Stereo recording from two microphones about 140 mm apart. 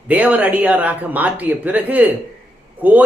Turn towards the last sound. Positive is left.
turn(degrees=-10)  # may be behind; listen again after turning